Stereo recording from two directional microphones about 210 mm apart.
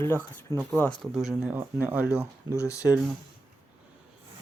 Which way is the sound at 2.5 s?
15° left (ahead or behind).